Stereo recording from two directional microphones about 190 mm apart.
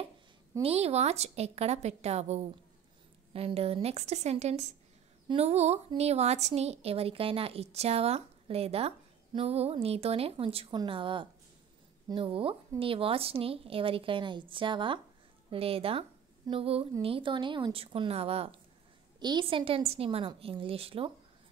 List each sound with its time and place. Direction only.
0.6 s a woman's voice: 30° right (ahead or behind)